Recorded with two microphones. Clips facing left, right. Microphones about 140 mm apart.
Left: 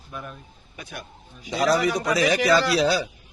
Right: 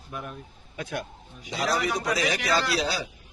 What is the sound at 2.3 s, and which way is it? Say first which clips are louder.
Speech: left 6 dB; 90° left.